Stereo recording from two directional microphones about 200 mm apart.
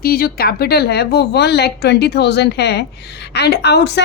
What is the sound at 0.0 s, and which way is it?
A woman's voice, 45° left (ahead or behind).